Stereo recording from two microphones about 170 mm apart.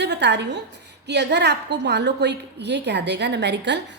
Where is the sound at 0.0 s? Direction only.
85° right.